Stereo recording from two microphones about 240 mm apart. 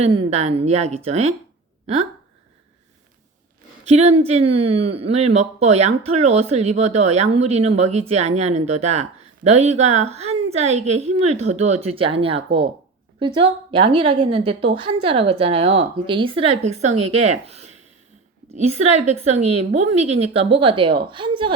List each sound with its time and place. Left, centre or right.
0.0 s speech: right
3.8 s speech: right